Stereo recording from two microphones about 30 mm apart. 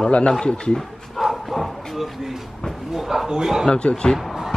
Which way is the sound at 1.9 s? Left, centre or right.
Centre.